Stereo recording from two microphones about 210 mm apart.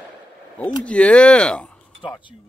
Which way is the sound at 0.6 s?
5° left (ahead or behind).